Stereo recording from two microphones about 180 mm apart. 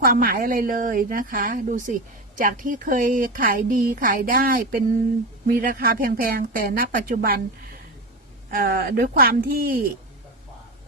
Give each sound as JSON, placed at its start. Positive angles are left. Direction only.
{"t": 0.0, "sound": "a woman's voice", "side_deg": -50}